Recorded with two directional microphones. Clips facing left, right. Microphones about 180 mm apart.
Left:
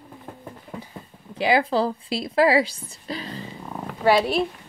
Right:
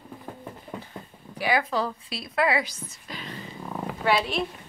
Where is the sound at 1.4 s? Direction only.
25° left (ahead or behind).